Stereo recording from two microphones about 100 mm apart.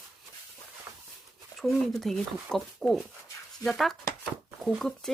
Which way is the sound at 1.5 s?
Centre (ahead or behind).